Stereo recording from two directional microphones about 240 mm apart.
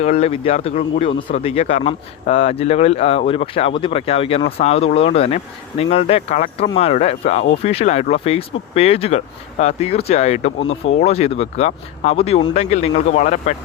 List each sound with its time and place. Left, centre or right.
0.0 s speech: left